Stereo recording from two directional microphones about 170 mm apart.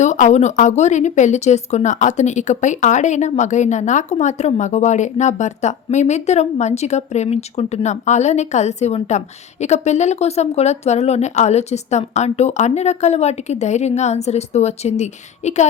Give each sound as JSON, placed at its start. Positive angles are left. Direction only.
{"t": 0.0, "sound": "speech", "side_deg": 45}